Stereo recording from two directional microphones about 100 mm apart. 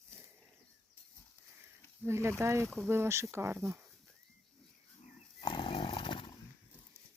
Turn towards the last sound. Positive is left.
turn(degrees=65)  # may be behind; listen again after turning